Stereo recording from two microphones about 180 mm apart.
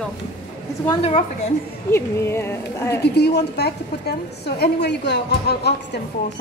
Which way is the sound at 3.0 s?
65° left (ahead or behind).